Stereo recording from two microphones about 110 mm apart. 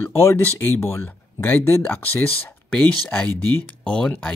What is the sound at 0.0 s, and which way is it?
Speech, 25° left (ahead or behind).